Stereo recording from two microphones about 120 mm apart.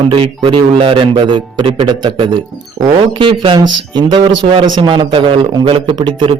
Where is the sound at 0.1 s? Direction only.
45° right (ahead or behind).